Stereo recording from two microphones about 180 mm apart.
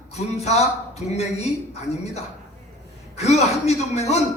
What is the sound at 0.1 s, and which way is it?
Speech, 35° left (ahead or behind).